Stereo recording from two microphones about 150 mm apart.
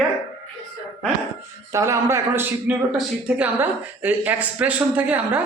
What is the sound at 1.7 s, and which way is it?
A man's voice, 20° right (ahead or behind).